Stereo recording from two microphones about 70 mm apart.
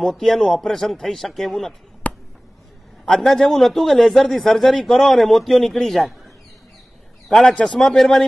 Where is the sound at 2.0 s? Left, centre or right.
Left.